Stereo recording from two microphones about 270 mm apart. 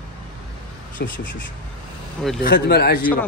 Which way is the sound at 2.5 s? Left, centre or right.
Left.